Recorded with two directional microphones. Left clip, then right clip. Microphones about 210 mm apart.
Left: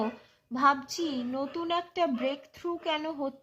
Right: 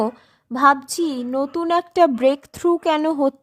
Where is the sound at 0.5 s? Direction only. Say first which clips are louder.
Right 10 dB; 50° right (ahead or behind).